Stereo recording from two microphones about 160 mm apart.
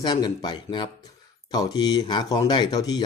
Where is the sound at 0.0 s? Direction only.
25° left (ahead or behind).